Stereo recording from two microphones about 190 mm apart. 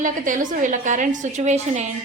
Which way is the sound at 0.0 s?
45° right (ahead or behind).